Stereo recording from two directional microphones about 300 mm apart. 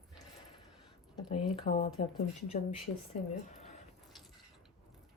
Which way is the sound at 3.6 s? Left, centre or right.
Left.